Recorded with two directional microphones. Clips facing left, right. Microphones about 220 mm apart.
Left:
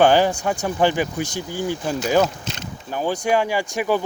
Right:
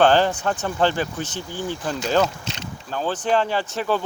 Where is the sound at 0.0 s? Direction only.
10° left (ahead or behind).